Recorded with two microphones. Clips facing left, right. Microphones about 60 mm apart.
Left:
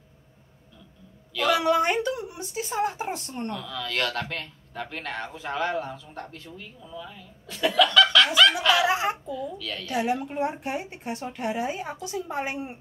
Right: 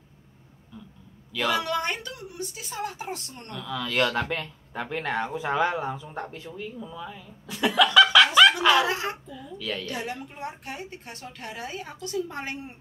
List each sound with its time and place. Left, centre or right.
1.5 s a woman's voice: centre
3.5 s speech: centre
8.8 s a woman's voice: centre
9.3 s speech: centre
9.8 s a woman's voice: centre